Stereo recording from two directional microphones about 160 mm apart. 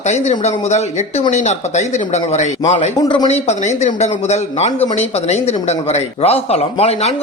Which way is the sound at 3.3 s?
45° left (ahead or behind).